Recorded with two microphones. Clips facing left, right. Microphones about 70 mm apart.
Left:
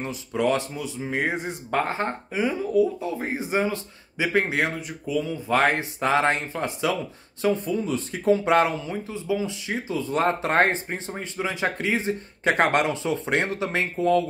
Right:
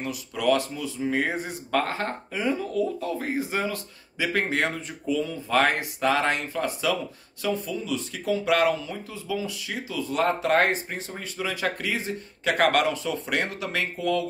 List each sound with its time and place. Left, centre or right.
0.0 s speech: left